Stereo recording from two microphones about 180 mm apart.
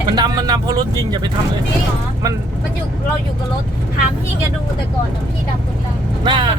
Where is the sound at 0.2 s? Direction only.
25° right (ahead or behind).